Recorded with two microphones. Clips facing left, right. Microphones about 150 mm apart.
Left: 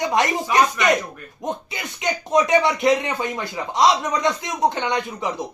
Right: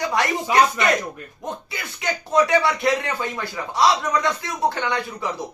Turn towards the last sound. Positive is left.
turn(degrees=20)  # may be behind; listen again after turning